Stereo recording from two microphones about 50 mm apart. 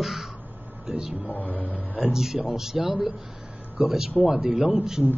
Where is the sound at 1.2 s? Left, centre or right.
Left.